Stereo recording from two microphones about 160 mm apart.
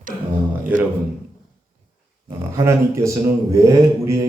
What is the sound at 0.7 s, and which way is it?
Speech, 10° right (ahead or behind).